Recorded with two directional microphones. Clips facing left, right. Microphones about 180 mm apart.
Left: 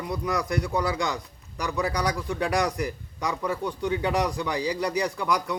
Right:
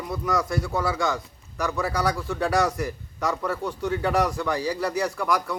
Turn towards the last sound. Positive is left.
turn(degrees=15)  # may be behind; listen again after turning